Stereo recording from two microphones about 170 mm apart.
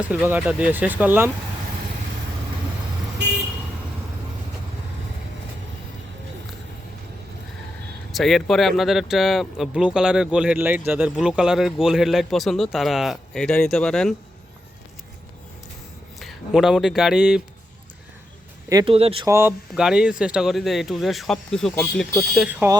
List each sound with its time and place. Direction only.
0.3 s speech: 10° right (ahead or behind)
8.1 s speech: centre (ahead or behind)
16.2 s speech: centre (ahead or behind)
18.7 s speech: 25° right (ahead or behind)
18.9 s speech: 35° right (ahead or behind)
19.2 s speech: 15° right (ahead or behind); by 22.0 s 5° left (ahead or behind)
22.4 s speech: 10° right (ahead or behind)